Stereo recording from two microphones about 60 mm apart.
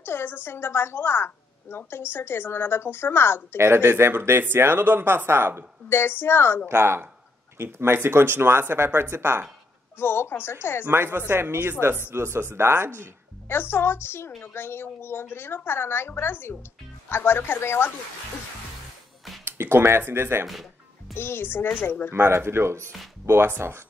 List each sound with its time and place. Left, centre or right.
0.0 s a woman's voice: left
3.5 s speech: right
5.9 s a woman's voice: left
6.7 s speech: right
9.9 s a woman's voice: left
10.9 s speech: right
13.5 s a woman's voice: left
19.4 s speech: right
21.1 s a woman's voice: left
22.1 s speech: right